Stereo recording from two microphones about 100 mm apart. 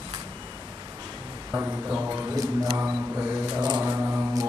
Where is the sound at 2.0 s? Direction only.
15° right (ahead or behind).